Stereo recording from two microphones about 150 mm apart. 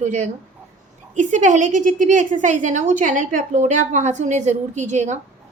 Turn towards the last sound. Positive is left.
turn(degrees=-50)  # may be behind; listen again after turning